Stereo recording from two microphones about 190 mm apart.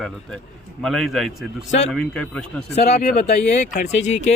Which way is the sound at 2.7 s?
35° left (ahead or behind).